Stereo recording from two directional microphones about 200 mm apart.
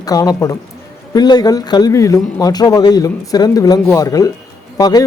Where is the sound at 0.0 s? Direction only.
20° left (ahead or behind).